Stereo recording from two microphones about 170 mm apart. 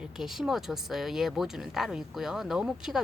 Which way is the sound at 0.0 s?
Centre (ahead or behind).